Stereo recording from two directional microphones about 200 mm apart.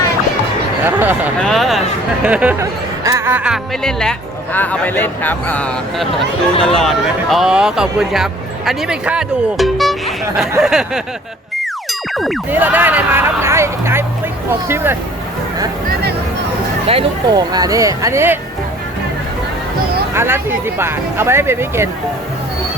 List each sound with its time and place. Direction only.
0.9 s a sound: 10° right (ahead or behind)
1.4 s speech: centre (ahead or behind)
16.8 s speech: 30° right (ahead or behind); by 18.3 s 15° right (ahead or behind)
20.1 s speech: 10° right (ahead or behind)